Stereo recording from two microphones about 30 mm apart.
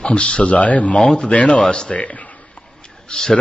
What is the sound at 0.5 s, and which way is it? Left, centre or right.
Speech, left.